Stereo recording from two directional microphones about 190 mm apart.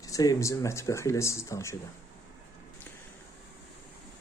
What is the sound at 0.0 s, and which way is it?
Speech, 20° left (ahead or behind).